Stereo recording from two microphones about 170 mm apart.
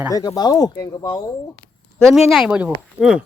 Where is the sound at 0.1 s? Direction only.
20° left (ahead or behind).